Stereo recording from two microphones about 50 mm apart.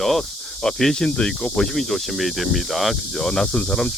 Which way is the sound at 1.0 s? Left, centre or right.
Centre.